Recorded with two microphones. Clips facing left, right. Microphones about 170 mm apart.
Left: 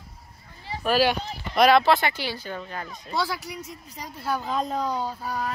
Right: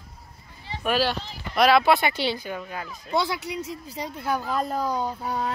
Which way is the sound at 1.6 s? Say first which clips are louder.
Even; 5° right (ahead or behind).